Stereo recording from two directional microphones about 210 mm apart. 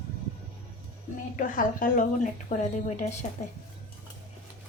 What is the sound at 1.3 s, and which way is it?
A woman's voice, 40° left (ahead or behind).